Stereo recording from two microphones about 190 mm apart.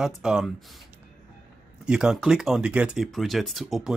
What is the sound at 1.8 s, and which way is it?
Speech, 5° right (ahead or behind).